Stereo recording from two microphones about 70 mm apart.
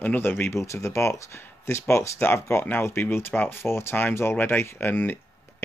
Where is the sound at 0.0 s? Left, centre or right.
Left.